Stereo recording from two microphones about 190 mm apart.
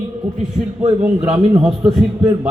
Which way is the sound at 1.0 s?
5° right (ahead or behind).